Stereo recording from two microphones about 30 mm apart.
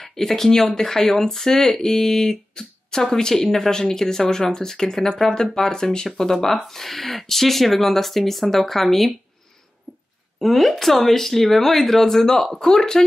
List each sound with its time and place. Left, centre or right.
0.0 s speech: centre
6.3 s speech: centre
9.9 s a sound: right
10.4 s speech: centre